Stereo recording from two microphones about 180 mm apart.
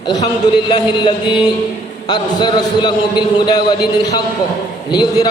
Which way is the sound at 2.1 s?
25° left (ahead or behind).